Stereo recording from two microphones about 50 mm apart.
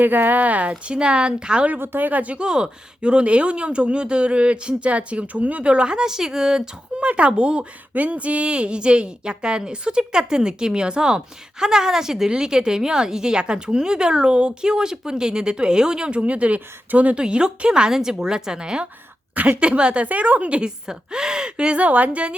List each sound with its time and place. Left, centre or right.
0.0 s speech: right; by 1.6 s centre
1.8 s speech: right; by 6.6 s centre
7.0 s a woman's voice: right
17.2 s a woman's voice: centre